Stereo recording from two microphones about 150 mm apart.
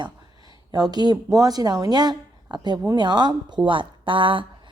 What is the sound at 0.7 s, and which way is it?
A woman's voice, 25° right (ahead or behind).